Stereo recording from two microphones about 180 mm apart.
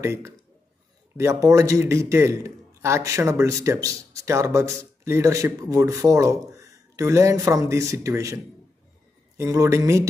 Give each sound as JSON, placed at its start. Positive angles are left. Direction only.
{"t": 0.0, "sound": "a man's voice", "side_deg": -15}
{"t": 9.4, "sound": "a man's voice", "side_deg": -15}